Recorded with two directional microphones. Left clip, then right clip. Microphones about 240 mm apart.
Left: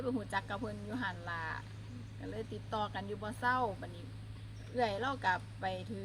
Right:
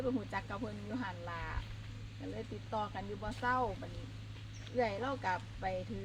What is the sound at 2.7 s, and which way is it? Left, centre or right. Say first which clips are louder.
Speech: left 1 dB; centre.